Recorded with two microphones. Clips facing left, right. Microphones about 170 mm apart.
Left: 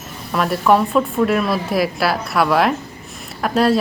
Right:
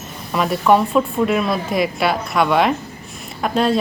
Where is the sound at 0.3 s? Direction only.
Centre (ahead or behind).